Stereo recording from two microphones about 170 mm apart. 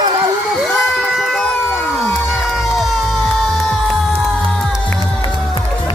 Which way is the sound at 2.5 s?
Centre (ahead or behind).